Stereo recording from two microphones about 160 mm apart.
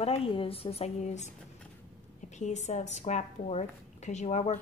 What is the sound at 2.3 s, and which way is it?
A woman's voice, 45° left (ahead or behind).